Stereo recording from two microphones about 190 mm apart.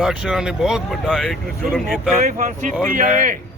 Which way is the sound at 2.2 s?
45° right (ahead or behind).